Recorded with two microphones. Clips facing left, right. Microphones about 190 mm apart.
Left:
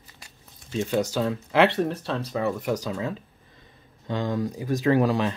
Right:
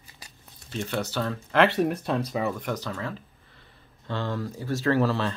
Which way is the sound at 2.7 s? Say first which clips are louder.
Left 4 dB; 15° left (ahead or behind).